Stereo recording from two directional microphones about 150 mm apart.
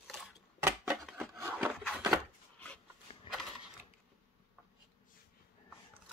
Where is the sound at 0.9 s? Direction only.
Centre (ahead or behind).